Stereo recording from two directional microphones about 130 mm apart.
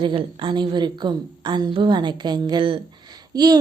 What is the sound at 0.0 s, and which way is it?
A woman's voice, 40° right (ahead or behind).